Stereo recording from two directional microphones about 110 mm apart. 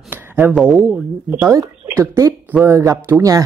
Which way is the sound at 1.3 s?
25° right (ahead or behind).